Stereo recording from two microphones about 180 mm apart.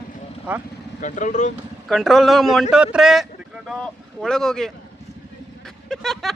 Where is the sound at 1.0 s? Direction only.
45° left (ahead or behind).